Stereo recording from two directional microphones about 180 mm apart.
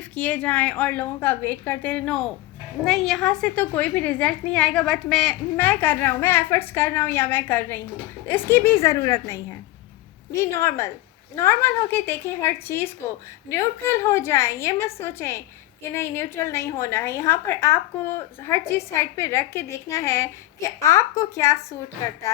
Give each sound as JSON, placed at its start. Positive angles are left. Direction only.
{"t": 0.2, "sound": "a woman's voice", "side_deg": 10}